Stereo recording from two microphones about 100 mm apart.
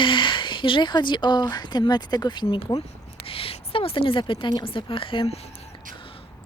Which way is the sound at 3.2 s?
70° left (ahead or behind).